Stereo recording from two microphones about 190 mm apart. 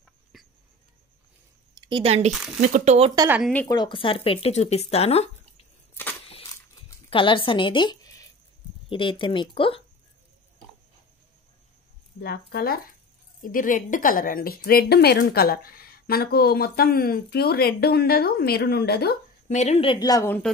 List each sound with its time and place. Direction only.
0.3 s a sound: centre (ahead or behind)
1.8 s speech: 25° right (ahead or behind)
2.3 s speech: centre (ahead or behind)
2.6 s speech: 40° right (ahead or behind)
3.2 s speech: 10° right (ahead or behind)
3.6 s speech: 20° left (ahead or behind)
7.1 s speech: 25° left (ahead or behind)
12.2 s a woman's voice: 55° left (ahead or behind)
19.5 s speech: 35° left (ahead or behind); by 20.4 s 15° left (ahead or behind)